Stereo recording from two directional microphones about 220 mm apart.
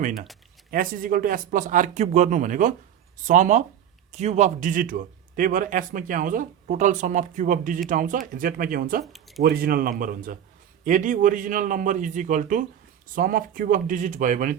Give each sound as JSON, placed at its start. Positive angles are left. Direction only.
{"t": 0.7, "sound": "a man's voice", "side_deg": -40}
{"t": 9.1, "sound": "speech", "side_deg": 0}
{"t": 9.4, "sound": "a man's voice", "side_deg": -45}